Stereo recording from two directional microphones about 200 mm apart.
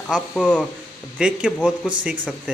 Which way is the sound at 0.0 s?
5° left (ahead or behind).